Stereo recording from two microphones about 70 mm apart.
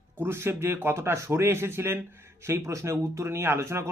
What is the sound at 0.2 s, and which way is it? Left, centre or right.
Speech, right.